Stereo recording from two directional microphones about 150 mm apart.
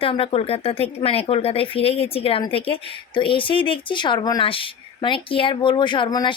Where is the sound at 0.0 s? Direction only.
40° left (ahead or behind).